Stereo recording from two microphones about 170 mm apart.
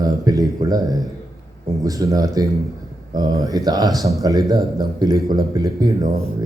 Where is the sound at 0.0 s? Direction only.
20° right (ahead or behind).